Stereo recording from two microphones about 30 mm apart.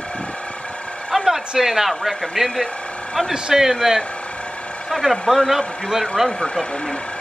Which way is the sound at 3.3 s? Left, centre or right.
Centre.